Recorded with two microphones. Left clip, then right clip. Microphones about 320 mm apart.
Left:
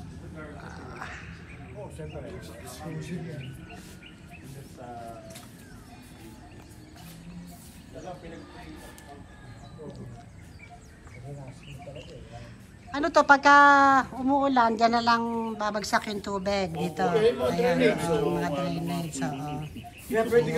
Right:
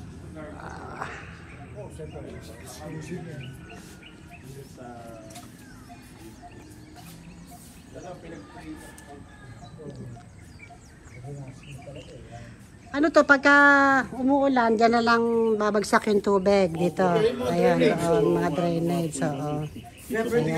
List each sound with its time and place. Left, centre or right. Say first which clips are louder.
0.6 s a sound: right 7 dB; centre
12.9 s speech: right 1 dB; centre
20.1 s speech: left 1 dB; centre